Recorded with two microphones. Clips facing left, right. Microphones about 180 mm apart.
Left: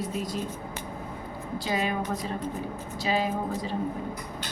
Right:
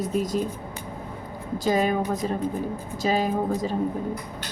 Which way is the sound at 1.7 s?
45° right (ahead or behind).